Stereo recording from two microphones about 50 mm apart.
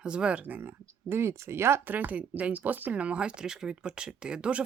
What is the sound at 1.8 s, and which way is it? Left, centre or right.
Speech, right.